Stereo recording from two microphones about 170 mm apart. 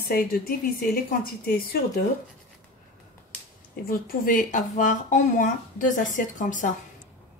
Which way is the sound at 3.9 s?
60° left (ahead or behind).